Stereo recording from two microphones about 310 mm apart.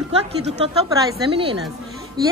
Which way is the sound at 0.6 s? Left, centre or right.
Centre.